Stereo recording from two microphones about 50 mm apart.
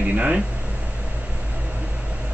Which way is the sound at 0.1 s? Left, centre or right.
Right.